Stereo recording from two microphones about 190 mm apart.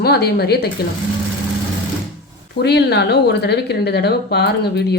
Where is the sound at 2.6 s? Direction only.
60° left (ahead or behind).